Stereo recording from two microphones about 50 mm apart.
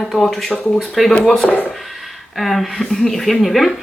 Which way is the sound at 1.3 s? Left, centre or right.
Centre.